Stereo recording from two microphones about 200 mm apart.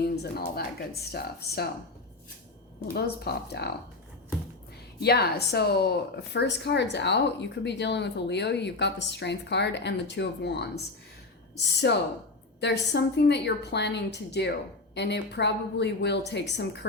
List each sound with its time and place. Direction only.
0.2 s speech: 50° left (ahead or behind)
2.9 s speech: 55° left (ahead or behind)
4.9 s a woman's voice: 55° left (ahead or behind)